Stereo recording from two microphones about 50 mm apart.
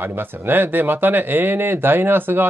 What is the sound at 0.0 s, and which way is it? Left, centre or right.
Speech, right.